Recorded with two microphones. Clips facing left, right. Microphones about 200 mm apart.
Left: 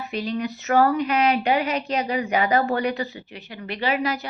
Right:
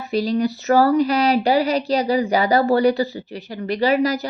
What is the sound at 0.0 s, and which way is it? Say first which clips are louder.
A woman's voice: right 7 dB; 35° right (ahead or behind).